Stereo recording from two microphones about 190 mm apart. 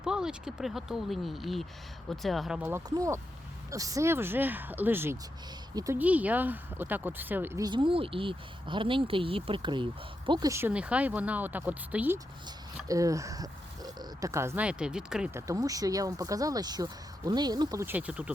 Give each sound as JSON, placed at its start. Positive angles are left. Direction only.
{"t": 0.0, "sound": "speech", "side_deg": -5}
{"t": 2.6, "sound": "speech", "side_deg": -15}